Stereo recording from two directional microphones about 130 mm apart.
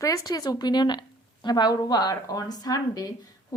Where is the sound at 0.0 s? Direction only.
25° left (ahead or behind).